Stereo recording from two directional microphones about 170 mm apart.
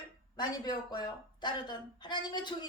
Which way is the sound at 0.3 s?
25° left (ahead or behind).